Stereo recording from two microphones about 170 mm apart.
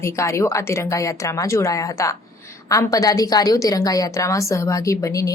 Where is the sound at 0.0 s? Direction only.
15° left (ahead or behind).